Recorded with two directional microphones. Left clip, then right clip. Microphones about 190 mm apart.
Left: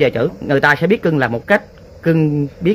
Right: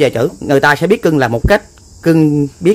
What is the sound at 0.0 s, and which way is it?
Speech, 30° right (ahead or behind).